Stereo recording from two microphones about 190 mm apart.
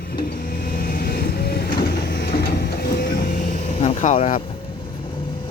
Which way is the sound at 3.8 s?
40° left (ahead or behind).